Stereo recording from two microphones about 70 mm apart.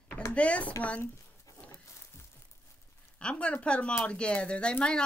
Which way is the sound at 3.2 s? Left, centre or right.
Centre.